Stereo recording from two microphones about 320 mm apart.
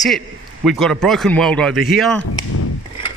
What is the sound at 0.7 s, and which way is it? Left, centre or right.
A man's voice, centre.